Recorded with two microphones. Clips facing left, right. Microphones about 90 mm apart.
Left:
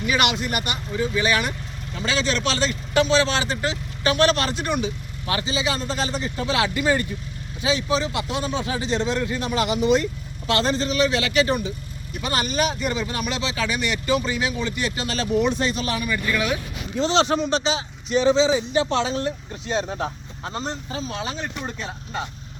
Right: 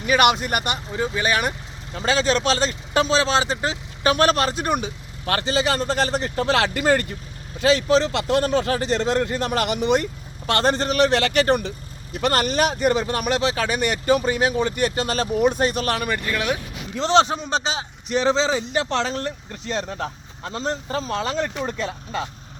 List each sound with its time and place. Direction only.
0.0 s speech: 45° right (ahead or behind); by 7.2 s 65° right (ahead or behind)
7.6 s speech: 75° right (ahead or behind); by 16.2 s 60° right (ahead or behind)
16.3 s speech: 45° right (ahead or behind)
18.1 s speech: 75° right (ahead or behind)
21.2 s speech: 80° right